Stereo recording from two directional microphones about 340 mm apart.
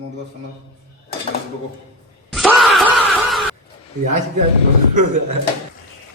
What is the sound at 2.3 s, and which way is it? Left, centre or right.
Groan, centre.